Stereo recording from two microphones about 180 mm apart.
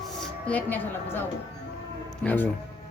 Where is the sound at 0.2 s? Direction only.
5° left (ahead or behind).